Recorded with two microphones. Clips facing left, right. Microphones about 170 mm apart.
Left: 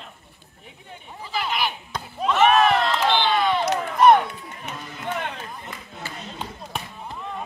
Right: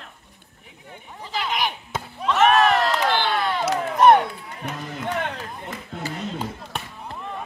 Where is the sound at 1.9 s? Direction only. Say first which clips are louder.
Even; centre (ahead or behind).